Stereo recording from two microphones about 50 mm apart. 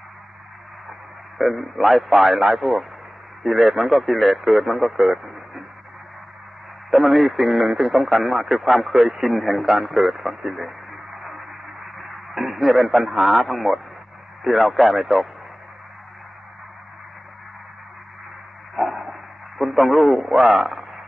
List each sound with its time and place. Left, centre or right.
1.4 s speech: centre
6.9 s speech: centre
11.3 s radio: centre
14.4 s speech: centre
18.8 s dog: centre
19.6 s speech: centre
20.2 s speech: centre